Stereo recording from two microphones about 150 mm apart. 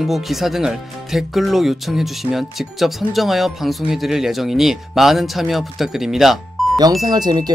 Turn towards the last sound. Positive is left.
turn(degrees=-25)  # may be behind; listen again after turning